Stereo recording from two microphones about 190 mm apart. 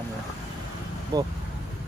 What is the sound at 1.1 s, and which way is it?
Speech, 20° right (ahead or behind).